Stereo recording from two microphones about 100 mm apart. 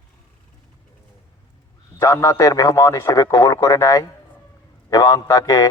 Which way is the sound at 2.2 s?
35° left (ahead or behind).